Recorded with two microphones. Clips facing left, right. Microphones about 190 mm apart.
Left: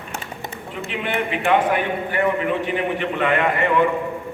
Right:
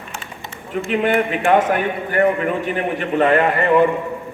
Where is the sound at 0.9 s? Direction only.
50° right (ahead or behind).